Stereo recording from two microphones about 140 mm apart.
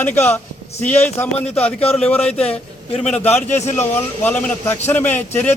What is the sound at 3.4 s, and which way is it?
Speech, 55° left (ahead or behind).